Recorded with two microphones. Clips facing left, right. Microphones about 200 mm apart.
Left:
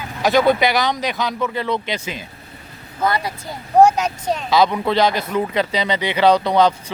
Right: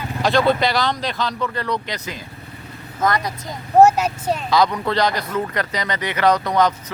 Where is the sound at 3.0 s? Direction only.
5° left (ahead or behind).